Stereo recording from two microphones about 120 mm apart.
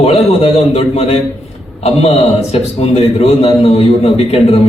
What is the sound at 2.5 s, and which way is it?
A man's voice, 60° left (ahead or behind).